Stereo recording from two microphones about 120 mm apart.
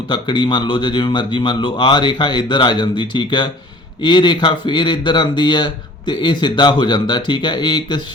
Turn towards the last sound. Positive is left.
turn(degrees=40)  # may be behind; listen again after turning